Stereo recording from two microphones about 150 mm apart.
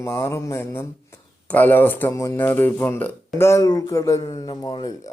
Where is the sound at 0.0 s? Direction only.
15° left (ahead or behind).